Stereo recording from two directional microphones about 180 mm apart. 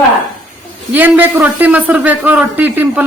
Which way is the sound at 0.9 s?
10° right (ahead or behind).